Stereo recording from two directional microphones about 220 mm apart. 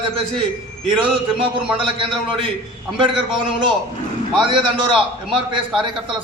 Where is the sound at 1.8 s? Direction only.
25° right (ahead or behind).